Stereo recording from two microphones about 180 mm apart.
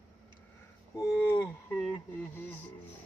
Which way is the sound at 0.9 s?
25° left (ahead or behind).